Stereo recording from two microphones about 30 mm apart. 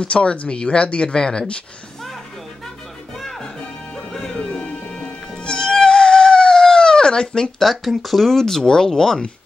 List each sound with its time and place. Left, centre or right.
0.0 s speech: left
4.9 s music: left
7.5 s speech: centre